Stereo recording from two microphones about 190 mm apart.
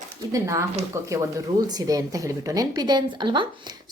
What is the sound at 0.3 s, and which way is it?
A woman's voice, 15° right (ahead or behind).